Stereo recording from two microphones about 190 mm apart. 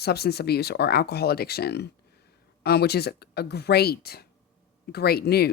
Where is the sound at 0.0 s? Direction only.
55° left (ahead or behind).